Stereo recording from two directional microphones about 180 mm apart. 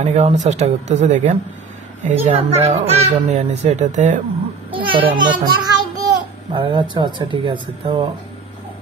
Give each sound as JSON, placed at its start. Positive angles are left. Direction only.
{"t": 0.0, "sound": "speech", "side_deg": -40}
{"t": 4.7, "sound": "a child's voice", "side_deg": -30}